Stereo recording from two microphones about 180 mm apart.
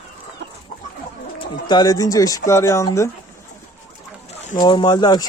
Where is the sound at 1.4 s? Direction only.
25° left (ahead or behind).